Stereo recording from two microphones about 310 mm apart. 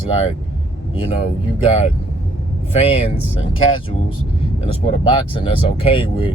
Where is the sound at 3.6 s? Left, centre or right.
Centre.